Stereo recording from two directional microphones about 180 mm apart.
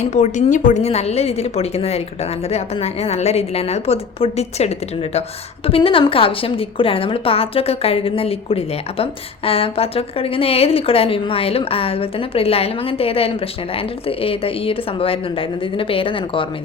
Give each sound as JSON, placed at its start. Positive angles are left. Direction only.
{"t": 0.0, "sound": "a woman's voice", "side_deg": 40}